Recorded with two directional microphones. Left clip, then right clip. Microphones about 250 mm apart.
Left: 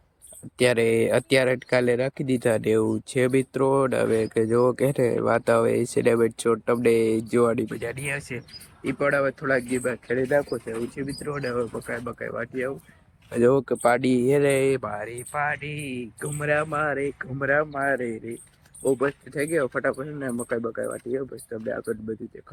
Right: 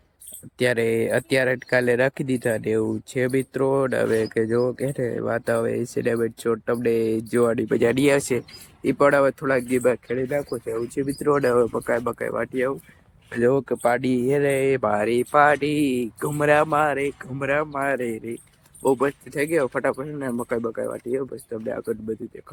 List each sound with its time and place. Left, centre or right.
0.6 s speech: centre
7.7 s speech: centre
13.4 s speech: centre
15.6 s speech: centre